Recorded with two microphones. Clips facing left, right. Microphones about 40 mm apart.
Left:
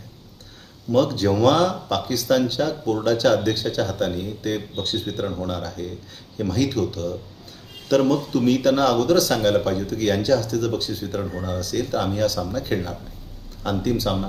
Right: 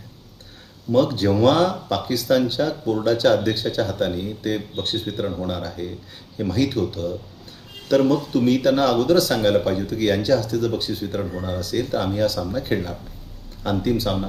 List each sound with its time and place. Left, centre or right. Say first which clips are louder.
0.9 s speech: right 1 dB; centre
11.2 s speech: right 1 dB; centre
11.4 s speech: right 1 dB; centre
13.9 s speech: right 1 dB; centre